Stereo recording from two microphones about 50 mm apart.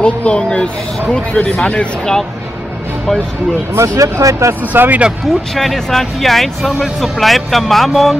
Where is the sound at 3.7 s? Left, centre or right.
Right.